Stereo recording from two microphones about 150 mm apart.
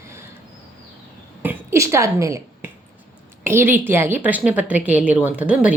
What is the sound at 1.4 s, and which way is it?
Speech, 15° right (ahead or behind).